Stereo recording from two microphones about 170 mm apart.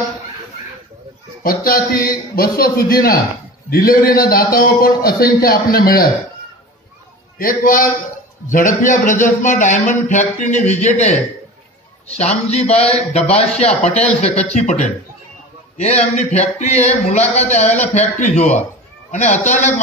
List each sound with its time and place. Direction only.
1.4 s a man's voice: 60° left (ahead or behind)
7.3 s a man's voice: 55° left (ahead or behind)